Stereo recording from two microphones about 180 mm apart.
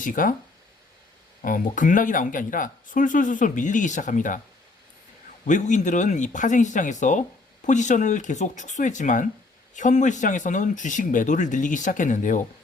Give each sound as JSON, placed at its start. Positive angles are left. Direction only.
{"t": 0.0, "sound": "speech", "side_deg": 50}
{"t": 1.4, "sound": "speech", "side_deg": 50}
{"t": 5.5, "sound": "speech", "side_deg": 45}